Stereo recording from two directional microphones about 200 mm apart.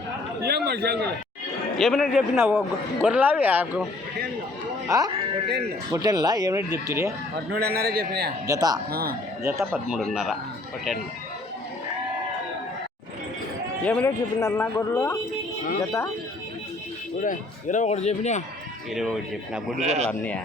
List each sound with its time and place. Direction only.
0.4 s a man's voice: 55° right (ahead or behind)
1.8 s speech: centre (ahead or behind)
2.3 s speech: 10° right (ahead or behind)
4.9 s speech: 20° right (ahead or behind)
7.6 s a man's voice: 50° right (ahead or behind)
8.4 s speech: 20° right (ahead or behind)
8.9 s a man's voice: 50° right (ahead or behind)
9.4 s speech: 15° right (ahead or behind)
9.7 s speech: centre (ahead or behind)
13.8 s speech: 10° left (ahead or behind)
17.2 s a man's voice: 40° left (ahead or behind)
18.9 s speech: centre (ahead or behind)
19.8 s speech: 35° right (ahead or behind)
20.1 s speech: 5° left (ahead or behind)